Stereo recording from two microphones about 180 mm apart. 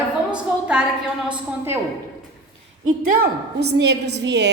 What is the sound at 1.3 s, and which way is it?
Speech, 15° right (ahead or behind).